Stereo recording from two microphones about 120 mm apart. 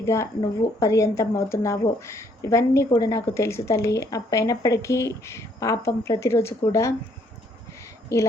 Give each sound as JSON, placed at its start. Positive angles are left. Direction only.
{"t": 0.0, "sound": "speech", "side_deg": 25}
{"t": 8.1, "sound": "speech", "side_deg": 25}